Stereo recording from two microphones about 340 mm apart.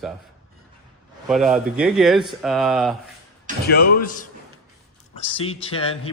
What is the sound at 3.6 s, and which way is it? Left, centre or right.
Speech, left.